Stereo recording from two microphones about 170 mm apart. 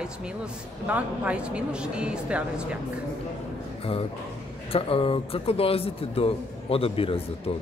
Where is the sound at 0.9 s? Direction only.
5° right (ahead or behind).